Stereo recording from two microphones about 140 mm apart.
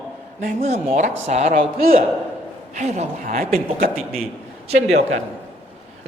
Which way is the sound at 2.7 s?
55° right (ahead or behind).